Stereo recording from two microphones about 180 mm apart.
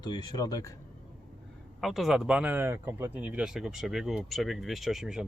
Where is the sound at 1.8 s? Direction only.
Centre (ahead or behind).